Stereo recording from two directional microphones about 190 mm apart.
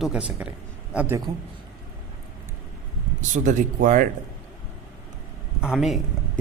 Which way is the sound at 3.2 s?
40° right (ahead or behind).